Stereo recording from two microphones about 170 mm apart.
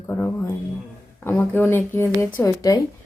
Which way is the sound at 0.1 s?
10° left (ahead or behind).